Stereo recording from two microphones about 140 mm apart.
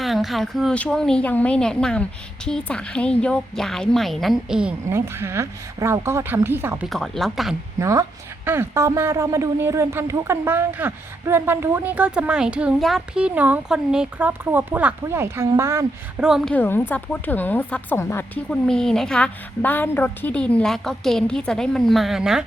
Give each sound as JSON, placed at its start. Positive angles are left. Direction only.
{"t": 0.0, "sound": "a woman's voice", "side_deg": 0}
{"t": 4.9, "sound": "speech", "side_deg": -20}
{"t": 6.8, "sound": "a woman's voice", "side_deg": 0}
{"t": 7.8, "sound": "speech", "side_deg": -20}
{"t": 16.1, "sound": "a woman's voice", "side_deg": -5}
{"t": 16.6, "sound": "a woman's voice", "side_deg": 15}
{"t": 18.7, "sound": "a woman's voice", "side_deg": 5}